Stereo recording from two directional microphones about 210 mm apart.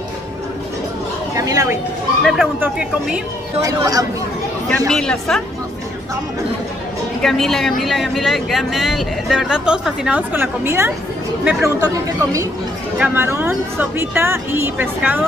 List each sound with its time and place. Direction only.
1.3 s speech: 15° right (ahead or behind)
2.2 s speech: 5° right (ahead or behind)
3.6 s speech: 15° right (ahead or behind)
4.6 s speech: 5° left (ahead or behind)
7.2 s speech: centre (ahead or behind)